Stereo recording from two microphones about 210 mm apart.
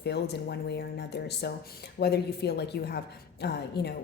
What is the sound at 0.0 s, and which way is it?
A woman's voice, 50° left (ahead or behind).